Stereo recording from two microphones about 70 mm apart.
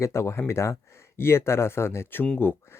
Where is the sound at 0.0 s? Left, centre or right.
Left.